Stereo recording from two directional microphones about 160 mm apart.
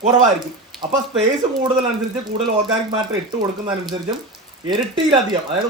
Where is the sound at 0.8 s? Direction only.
25° right (ahead or behind).